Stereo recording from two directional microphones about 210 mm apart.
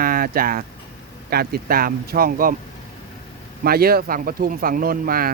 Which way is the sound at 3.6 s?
45° right (ahead or behind).